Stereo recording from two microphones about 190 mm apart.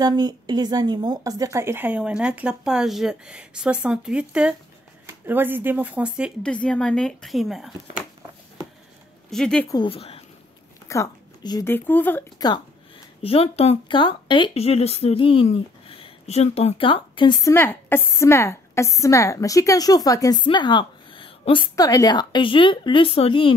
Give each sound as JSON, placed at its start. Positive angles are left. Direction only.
{"t": 0.0, "sound": "speech", "side_deg": -20}
{"t": 9.3, "sound": "speech", "side_deg": 5}
{"t": 9.7, "sound": "a woman's voice", "side_deg": 25}
{"t": 10.9, "sound": "a woman's voice", "side_deg": 20}
{"t": 13.2, "sound": "a woman's voice", "side_deg": 30}
{"t": 17.5, "sound": "a woman's voice", "side_deg": 10}